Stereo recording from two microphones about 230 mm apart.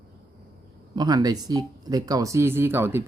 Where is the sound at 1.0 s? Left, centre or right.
Centre.